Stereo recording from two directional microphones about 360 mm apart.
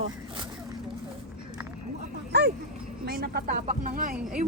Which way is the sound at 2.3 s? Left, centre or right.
Right.